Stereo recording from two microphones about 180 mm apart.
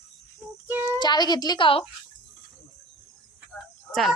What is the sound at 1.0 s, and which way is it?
Speech, 25° left (ahead or behind).